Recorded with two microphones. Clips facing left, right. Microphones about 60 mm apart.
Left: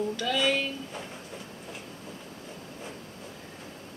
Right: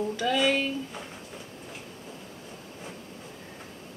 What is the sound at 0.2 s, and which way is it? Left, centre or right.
Speech, centre.